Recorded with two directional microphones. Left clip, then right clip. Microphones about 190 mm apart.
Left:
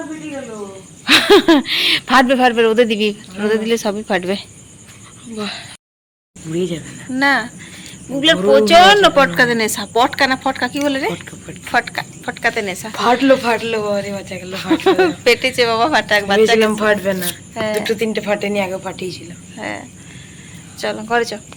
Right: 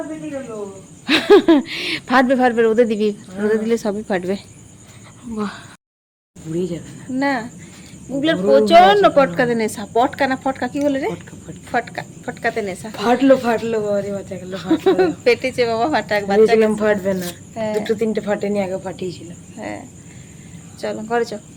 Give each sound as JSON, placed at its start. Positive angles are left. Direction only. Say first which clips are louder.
{"t": 1.0, "sound": "speech", "louder": "left 2 dB", "side_deg": 0}
{"t": 5.4, "sound": "speech", "louder": "left 2 dB", "side_deg": -45}
{"t": 6.5, "sound": "speech", "louder": "left 3 dB", "side_deg": 20}
{"t": 7.2, "sound": "a woman's voice", "louder": "left 6 dB", "side_deg": -5}
{"t": 8.5, "sound": "a woman's voice", "louder": "left 1 dB", "side_deg": -5}
{"t": 11.3, "sound": "speech", "louder": "left 6 dB", "side_deg": 15}
{"t": 11.7, "sound": "a woman's voice", "louder": "left 4 dB", "side_deg": -10}
{"t": 12.9, "sound": "speech", "louder": "left 1 dB", "side_deg": -20}
{"t": 14.5, "sound": "a woman's voice", "louder": "left 2 dB", "side_deg": -10}
{"t": 17.5, "sound": "speech", "louder": "left 2 dB", "side_deg": 0}
{"t": 17.8, "sound": "speech", "louder": "left 2 dB", "side_deg": -15}
{"t": 19.5, "sound": "speech", "louder": "left 4 dB", "side_deg": 0}